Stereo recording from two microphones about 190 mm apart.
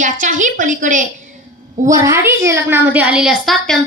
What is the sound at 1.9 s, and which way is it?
A woman's voice, 15° right (ahead or behind).